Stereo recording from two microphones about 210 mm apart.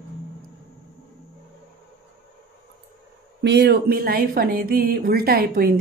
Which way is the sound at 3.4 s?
55° right (ahead or behind).